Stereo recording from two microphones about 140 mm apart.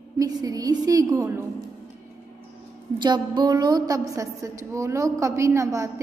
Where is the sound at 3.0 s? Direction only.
30° right (ahead or behind).